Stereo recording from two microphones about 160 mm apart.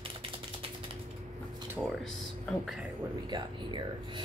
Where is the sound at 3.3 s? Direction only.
30° right (ahead or behind).